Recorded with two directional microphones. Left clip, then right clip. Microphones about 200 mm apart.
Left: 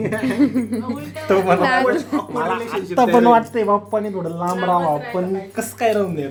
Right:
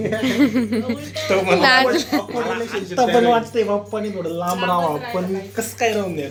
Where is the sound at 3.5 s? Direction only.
30° left (ahead or behind).